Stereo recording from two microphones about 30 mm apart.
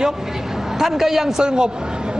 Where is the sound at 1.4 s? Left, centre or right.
Right.